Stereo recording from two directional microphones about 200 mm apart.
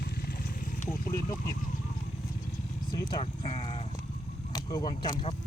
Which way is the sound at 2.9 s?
25° left (ahead or behind).